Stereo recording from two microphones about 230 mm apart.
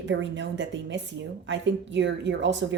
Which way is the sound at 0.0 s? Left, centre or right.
Right.